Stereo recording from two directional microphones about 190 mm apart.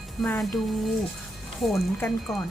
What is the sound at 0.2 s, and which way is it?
Speech, centre (ahead or behind).